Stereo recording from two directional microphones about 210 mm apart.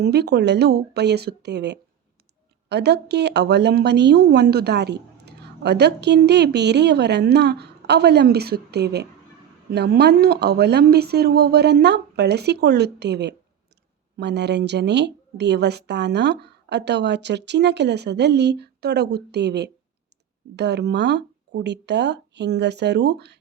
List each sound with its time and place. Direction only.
0.0 s a woman's voice: 50° right (ahead or behind)